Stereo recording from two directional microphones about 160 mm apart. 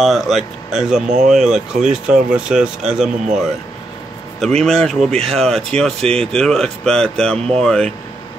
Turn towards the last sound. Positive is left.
turn(degrees=5)  # may be behind; listen again after turning